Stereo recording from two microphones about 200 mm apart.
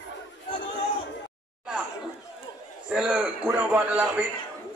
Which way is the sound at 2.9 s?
5° right (ahead or behind).